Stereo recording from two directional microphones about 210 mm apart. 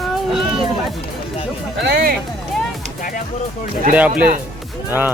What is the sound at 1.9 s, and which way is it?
Speech, 45° right (ahead or behind).